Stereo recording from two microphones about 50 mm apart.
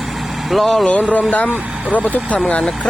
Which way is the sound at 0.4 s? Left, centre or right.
Centre.